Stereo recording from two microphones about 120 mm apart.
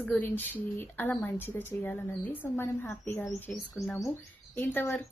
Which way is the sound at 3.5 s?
Centre (ahead or behind).